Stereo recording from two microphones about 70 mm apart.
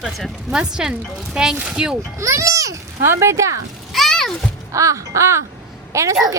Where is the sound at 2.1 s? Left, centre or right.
Right.